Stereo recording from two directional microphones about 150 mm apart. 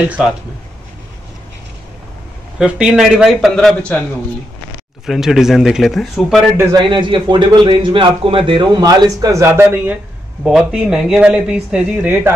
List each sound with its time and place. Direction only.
2.6 s speech: 5° right (ahead or behind)
5.0 s speech: 5° right (ahead or behind)
6.5 s a man's voice: 30° right (ahead or behind)
10.4 s speech: 5° right (ahead or behind)